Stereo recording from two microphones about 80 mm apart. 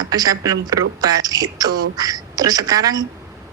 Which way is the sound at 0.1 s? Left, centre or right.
Right.